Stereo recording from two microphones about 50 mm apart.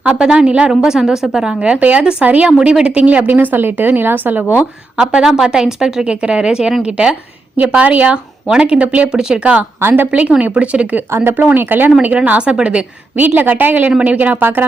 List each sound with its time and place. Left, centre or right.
0.1 s speech: centre
2.2 s a woman's voice: right
2.5 s a woman's voice: centre; by 4.6 s right
4.9 s speech: centre
7.5 s speech: right
9.1 s speech: centre
9.8 s speech: right
10.1 s speech: right
11.1 s speech: right
11.5 s speech: right
12.0 s speech: right
13.1 s a woman's voice: right